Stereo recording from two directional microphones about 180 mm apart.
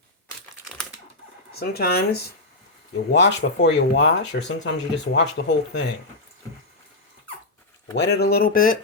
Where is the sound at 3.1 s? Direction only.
75° left (ahead or behind).